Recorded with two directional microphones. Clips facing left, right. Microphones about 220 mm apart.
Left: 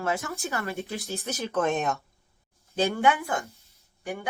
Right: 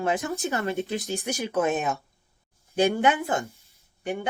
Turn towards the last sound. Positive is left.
turn(degrees=-25)  # may be behind; listen again after turning